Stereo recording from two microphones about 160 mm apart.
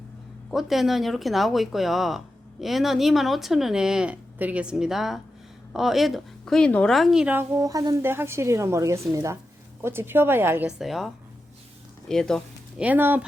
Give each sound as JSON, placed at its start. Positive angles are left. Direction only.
{"t": 0.5, "sound": "a woman's voice", "side_deg": 0}
{"t": 12.8, "sound": "a woman's voice", "side_deg": -10}